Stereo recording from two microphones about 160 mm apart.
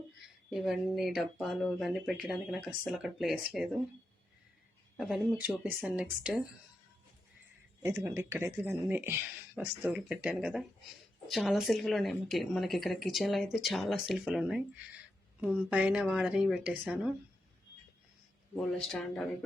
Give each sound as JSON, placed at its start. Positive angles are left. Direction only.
{"t": 0.5, "sound": "speech", "side_deg": 0}
{"t": 4.9, "sound": "speech", "side_deg": -5}
{"t": 7.8, "sound": "speech", "side_deg": -15}
{"t": 15.7, "sound": "speech", "side_deg": -5}
{"t": 18.5, "sound": "speech", "side_deg": 5}